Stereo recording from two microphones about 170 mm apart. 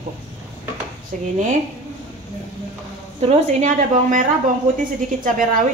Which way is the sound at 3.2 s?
45° right (ahead or behind).